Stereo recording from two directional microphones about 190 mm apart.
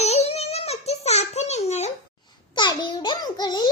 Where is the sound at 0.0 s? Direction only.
35° left (ahead or behind).